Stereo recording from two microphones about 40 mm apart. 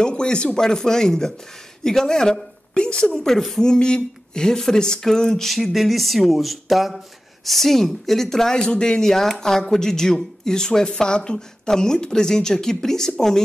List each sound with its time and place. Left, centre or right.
0.0 s a sound: left
0.6 s a woman's voice: centre
3.1 s speech: centre
9.1 s speech: centre